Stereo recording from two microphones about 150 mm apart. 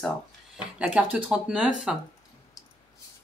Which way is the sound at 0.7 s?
10° right (ahead or behind).